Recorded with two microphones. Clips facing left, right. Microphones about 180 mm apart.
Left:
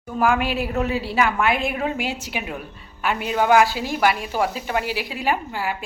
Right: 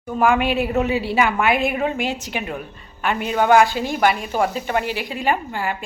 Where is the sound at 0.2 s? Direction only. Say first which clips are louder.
Right 3 dB; centre (ahead or behind).